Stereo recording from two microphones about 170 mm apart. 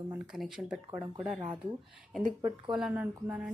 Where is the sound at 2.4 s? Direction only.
30° right (ahead or behind).